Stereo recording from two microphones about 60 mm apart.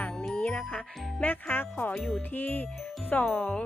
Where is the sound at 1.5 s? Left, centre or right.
Left.